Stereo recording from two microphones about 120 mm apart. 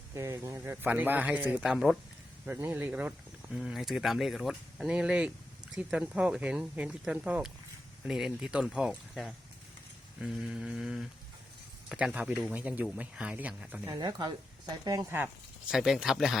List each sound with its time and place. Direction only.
0.1 s speech: 20° right (ahead or behind); by 13.8 s 5° right (ahead or behind)
13.8 s speech: 35° right (ahead or behind)
15.7 s speech: 5° right (ahead or behind)